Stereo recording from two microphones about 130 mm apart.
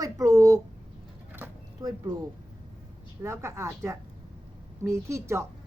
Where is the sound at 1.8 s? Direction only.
30° right (ahead or behind).